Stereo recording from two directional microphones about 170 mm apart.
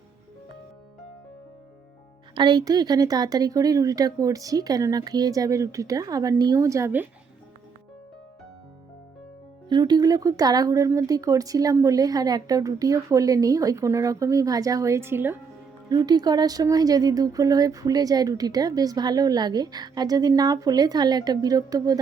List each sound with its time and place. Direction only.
2.3 s speech: 25° right (ahead or behind)
9.6 s speech: 25° right (ahead or behind)
15.9 s speech: 25° right (ahead or behind)